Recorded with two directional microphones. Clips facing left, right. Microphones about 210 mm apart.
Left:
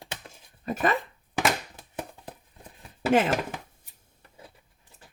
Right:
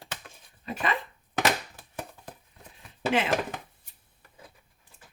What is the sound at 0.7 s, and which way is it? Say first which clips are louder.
Speech: left 4 dB; 45° left (ahead or behind).